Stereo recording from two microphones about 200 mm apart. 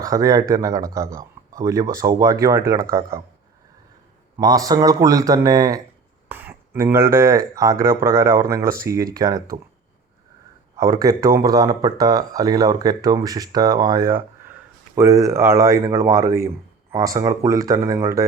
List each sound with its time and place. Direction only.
0.0 s speech: 15° right (ahead or behind)
4.4 s speech: 15° right (ahead or behind)
10.8 s speech: 15° right (ahead or behind)